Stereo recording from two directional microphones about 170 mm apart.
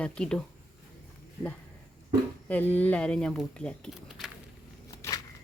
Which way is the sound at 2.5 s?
10° left (ahead or behind).